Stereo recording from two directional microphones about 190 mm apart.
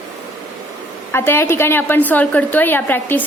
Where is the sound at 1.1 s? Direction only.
10° left (ahead or behind).